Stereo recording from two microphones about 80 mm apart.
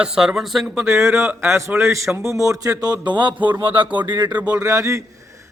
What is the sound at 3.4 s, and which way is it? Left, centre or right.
Speech, right.